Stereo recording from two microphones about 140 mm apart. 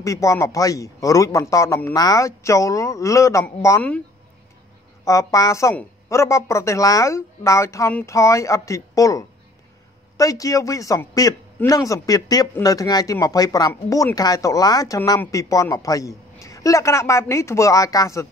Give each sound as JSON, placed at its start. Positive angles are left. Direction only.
{"t": 0.0, "sound": "a woman's voice", "side_deg": 25}
{"t": 5.0, "sound": "a woman's voice", "side_deg": 25}